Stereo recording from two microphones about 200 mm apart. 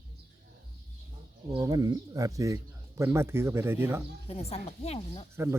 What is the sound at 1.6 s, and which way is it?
Speech, 15° right (ahead or behind).